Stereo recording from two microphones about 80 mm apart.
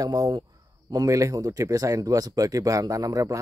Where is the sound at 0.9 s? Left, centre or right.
Right.